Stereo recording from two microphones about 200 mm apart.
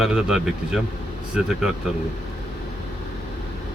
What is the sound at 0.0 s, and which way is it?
Speech, 5° right (ahead or behind).